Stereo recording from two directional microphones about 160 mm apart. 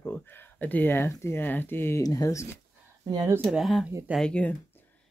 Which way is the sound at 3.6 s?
Centre (ahead or behind).